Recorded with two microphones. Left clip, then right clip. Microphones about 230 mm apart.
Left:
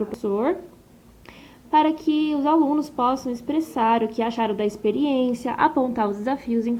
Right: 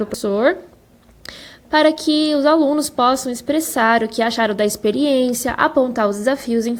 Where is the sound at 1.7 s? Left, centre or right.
Right.